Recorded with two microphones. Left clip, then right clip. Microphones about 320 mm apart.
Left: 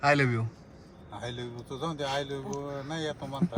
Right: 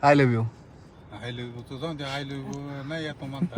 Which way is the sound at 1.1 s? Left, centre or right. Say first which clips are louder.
Right 1 dB; left.